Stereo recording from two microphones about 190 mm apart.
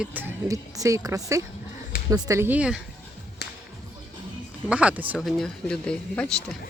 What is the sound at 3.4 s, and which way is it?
Music, 60° left (ahead or behind).